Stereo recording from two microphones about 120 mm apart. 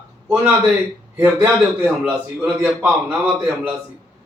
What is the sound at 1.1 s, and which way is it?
A man's voice, 20° right (ahead or behind).